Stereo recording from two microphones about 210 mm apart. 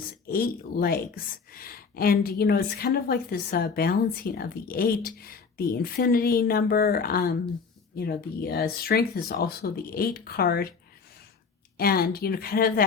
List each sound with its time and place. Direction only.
0.3 s speech: 45° left (ahead or behind)
11.8 s speech: 45° left (ahead or behind)